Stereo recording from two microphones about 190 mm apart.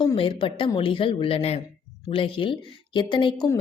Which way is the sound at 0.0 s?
25° left (ahead or behind).